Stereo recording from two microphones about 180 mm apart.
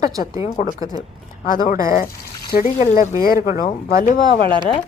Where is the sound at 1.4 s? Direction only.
45° left (ahead or behind).